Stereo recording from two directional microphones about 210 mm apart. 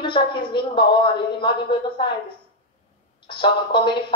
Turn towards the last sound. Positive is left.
turn(degrees=20)  # may be behind; listen again after turning